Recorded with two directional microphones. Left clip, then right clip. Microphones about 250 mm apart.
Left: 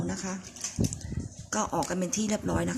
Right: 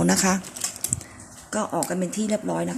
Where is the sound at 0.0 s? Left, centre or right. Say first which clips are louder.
Right 14 dB; right.